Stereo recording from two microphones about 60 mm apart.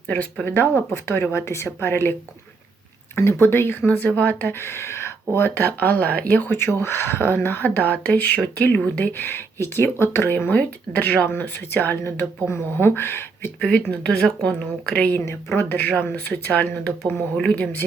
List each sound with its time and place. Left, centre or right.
0.4 s speech: left
1.3 s speech: left
3.2 s speech: left
4.5 s speech: left
5.5 s speech: left
10.3 s speech: left
13.6 s speech: left
15.2 s speech: left